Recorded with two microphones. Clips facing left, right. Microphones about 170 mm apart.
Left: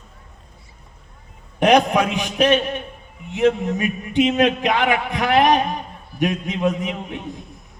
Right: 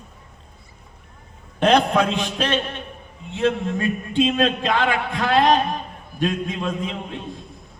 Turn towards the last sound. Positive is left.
turn(degrees=20)  # may be behind; listen again after turning